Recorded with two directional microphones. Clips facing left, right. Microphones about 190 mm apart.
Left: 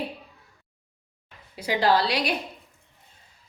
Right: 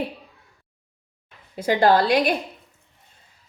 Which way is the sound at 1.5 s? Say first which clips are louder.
Right 5 dB; 50° right (ahead or behind).